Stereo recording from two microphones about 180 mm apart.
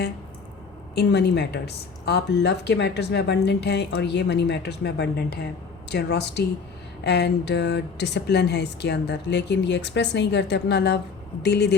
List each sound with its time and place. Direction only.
0.9 s speech: 70° left (ahead or behind)